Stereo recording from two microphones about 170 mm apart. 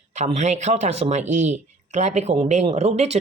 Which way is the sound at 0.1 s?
40° right (ahead or behind).